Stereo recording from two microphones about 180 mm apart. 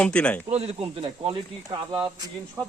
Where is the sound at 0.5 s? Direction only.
35° right (ahead or behind).